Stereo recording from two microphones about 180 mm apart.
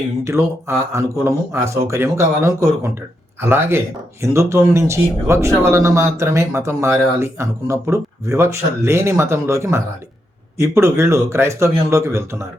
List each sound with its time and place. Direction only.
0.3 s speech: 15° right (ahead or behind)